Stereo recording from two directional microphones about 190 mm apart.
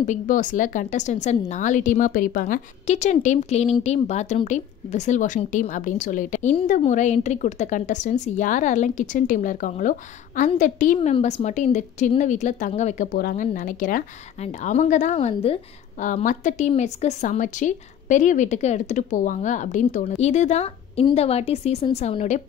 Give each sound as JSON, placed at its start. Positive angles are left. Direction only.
{"t": 0.0, "sound": "speech", "side_deg": 40}